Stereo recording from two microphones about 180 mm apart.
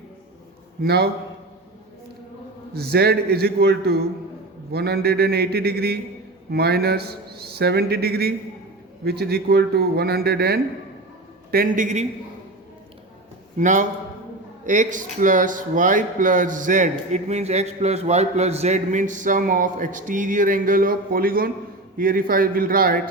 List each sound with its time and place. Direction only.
0.8 s a man's voice: 65° right (ahead or behind)
2.7 s a man's voice: 60° right (ahead or behind)
11.5 s speech: 50° right (ahead or behind)
13.6 s speech: 45° right (ahead or behind)